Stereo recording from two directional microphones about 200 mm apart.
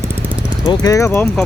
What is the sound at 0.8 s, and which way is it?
Speech, 15° left (ahead or behind).